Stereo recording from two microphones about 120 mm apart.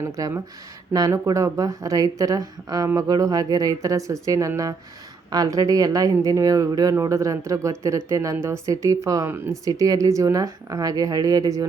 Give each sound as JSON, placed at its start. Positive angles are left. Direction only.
{"t": 0.0, "sound": "a woman's voice", "side_deg": -25}